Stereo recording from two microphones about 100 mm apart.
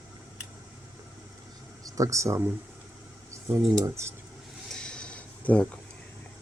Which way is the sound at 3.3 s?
25° right (ahead or behind).